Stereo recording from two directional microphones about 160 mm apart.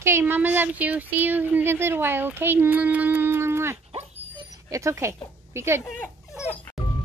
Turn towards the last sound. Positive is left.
turn(degrees=0)  # may be behind; listen again after turning